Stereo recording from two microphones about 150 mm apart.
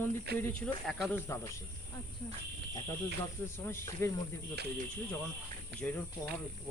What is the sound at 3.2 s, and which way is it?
Speech, 15° left (ahead or behind).